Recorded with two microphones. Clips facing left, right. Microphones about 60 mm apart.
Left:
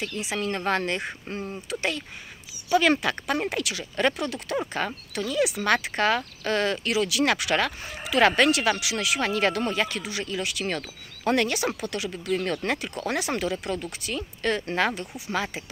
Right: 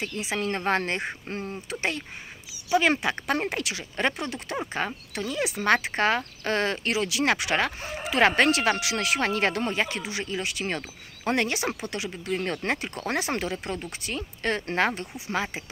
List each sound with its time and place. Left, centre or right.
0.0 s speech: right
3.3 s speech: right